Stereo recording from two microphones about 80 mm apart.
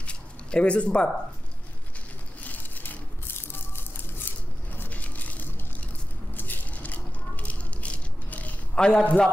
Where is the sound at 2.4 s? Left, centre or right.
Left.